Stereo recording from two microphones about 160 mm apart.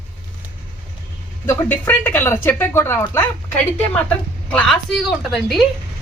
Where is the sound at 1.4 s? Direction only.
15° left (ahead or behind).